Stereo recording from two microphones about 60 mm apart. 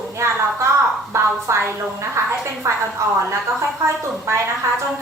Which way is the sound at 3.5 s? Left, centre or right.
Right.